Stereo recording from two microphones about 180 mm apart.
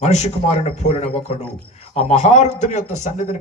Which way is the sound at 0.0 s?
40° left (ahead or behind).